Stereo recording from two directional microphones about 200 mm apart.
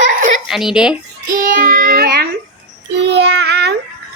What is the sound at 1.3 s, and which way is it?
Child singing, 45° right (ahead or behind).